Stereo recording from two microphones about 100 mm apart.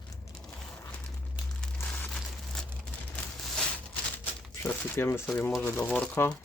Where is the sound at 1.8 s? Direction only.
15° left (ahead or behind).